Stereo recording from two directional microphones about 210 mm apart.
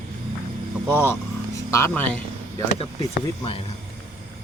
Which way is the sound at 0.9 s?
10° left (ahead or behind).